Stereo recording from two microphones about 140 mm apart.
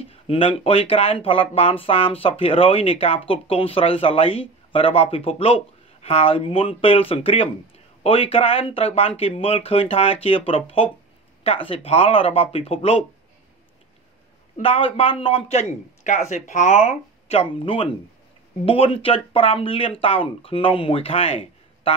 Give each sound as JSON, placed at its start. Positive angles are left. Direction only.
{"t": 0.0, "sound": "speech", "side_deg": 45}
{"t": 14.6, "sound": "speech", "side_deg": 40}